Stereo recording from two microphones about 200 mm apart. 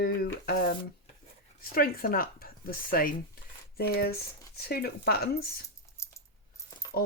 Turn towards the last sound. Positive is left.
turn(degrees=50)  # may be behind; listen again after turning